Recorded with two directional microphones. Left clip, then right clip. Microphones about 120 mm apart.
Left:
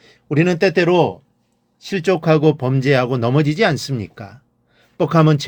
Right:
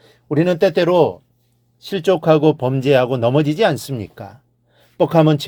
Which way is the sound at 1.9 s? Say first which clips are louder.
Right 2 dB; 25° right (ahead or behind).